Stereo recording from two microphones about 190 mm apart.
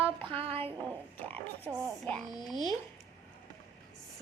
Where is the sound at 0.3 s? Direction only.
30° right (ahead or behind).